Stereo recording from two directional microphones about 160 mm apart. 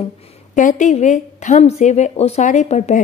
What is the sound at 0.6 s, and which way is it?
Speech, 50° left (ahead or behind).